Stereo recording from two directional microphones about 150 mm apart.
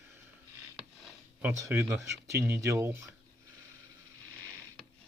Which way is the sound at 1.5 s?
15° right (ahead or behind).